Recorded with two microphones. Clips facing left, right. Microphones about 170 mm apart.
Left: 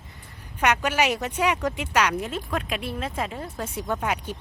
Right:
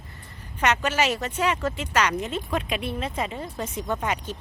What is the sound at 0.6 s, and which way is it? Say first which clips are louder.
Speech: left 1 dB; 10° left (ahead or behind).